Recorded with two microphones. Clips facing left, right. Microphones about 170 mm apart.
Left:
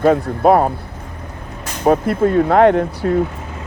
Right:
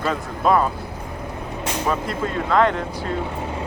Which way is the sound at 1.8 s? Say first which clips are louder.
Left 12 dB; 55° left (ahead or behind).